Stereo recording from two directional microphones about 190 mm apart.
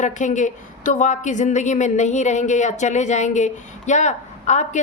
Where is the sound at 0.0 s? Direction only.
40° left (ahead or behind).